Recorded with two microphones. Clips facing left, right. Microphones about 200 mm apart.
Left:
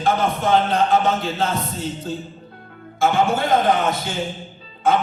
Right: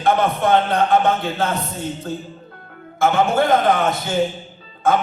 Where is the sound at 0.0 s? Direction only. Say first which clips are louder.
Right 2 dB; 55° right (ahead or behind).